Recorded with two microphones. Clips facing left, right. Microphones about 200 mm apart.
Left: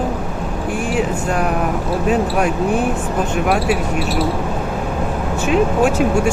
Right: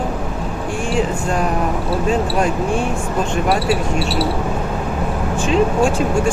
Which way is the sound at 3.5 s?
10° left (ahead or behind).